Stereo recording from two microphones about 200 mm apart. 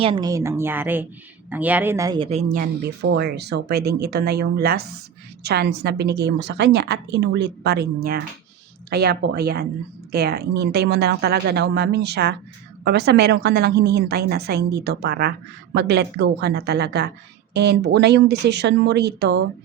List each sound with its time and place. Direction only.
0.0 s a woman's voice: 25° right (ahead or behind); by 19.4 s 55° right (ahead or behind)